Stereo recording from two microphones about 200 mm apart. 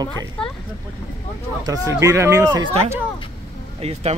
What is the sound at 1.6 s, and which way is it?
Speech, 15° right (ahead or behind).